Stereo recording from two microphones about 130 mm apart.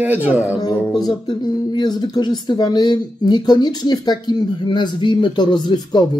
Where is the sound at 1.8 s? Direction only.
35° left (ahead or behind).